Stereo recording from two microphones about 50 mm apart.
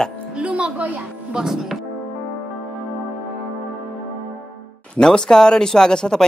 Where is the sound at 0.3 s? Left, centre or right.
Right.